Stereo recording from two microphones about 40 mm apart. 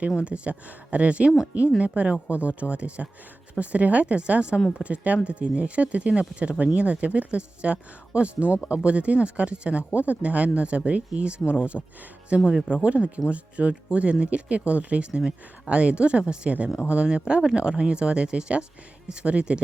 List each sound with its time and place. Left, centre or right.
0.3 s speech: right
8.4 s speech: left
8.7 s speech: right
11.7 s speech: centre
12.3 s speech: right